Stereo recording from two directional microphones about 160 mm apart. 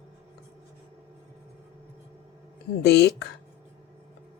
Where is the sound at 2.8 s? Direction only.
90° left.